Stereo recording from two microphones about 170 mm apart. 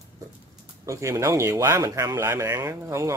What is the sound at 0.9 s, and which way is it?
Speech, 15° right (ahead or behind).